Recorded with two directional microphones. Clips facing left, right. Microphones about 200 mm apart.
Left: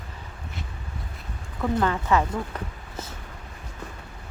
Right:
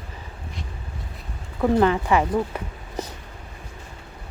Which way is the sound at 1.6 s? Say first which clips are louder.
Right 6 dB; 20° right (ahead or behind).